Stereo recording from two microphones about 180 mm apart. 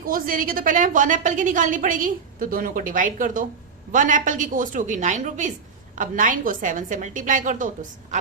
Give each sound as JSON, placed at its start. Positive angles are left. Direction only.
{"t": 0.0, "sound": "a woman's voice", "side_deg": -50}